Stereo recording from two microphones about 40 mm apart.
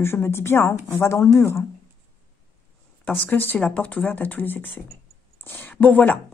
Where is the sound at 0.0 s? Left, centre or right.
Left.